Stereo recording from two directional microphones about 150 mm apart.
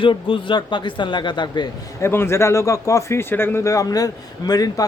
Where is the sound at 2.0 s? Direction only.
15° left (ahead or behind).